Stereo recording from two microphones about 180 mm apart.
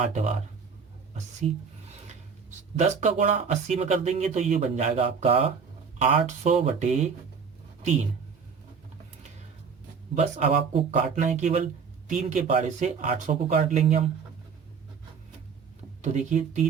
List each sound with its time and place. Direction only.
0.0 s speech: 40° right (ahead or behind)
1.4 s speech: 35° right (ahead or behind)
3.0 s speech: 40° right (ahead or behind)
10.2 s speech: 45° right (ahead or behind)
16.0 s speech: 40° right (ahead or behind)